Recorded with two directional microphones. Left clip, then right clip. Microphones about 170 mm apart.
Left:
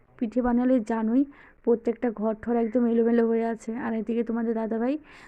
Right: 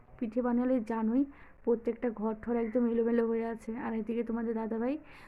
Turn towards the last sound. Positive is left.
turn(degrees=35)  # may be behind; listen again after turning